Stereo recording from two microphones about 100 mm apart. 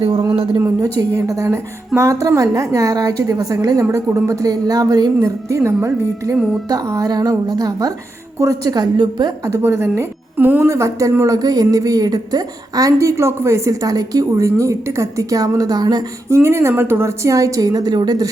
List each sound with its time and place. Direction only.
0.6 s a woman's voice: 30° right (ahead or behind)
9.5 s a woman's voice: 25° right (ahead or behind); by 16.0 s 40° right (ahead or behind)
16.3 s a woman's voice: 25° right (ahead or behind); by 18.3 s 45° right (ahead or behind)